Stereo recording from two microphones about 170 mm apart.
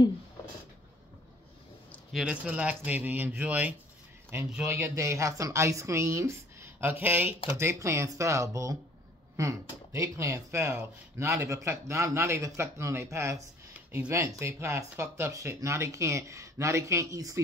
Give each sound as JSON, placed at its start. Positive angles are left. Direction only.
{"t": 1.9, "sound": "speech", "side_deg": 0}